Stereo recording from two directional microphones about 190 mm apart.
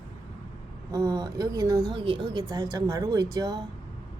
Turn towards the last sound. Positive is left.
turn(degrees=-20)  # may be behind; listen again after turning